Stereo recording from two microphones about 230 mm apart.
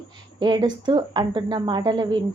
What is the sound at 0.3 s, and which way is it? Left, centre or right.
A woman's voice, centre.